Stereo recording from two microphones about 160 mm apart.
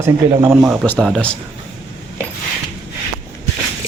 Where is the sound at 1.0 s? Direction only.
5° left (ahead or behind).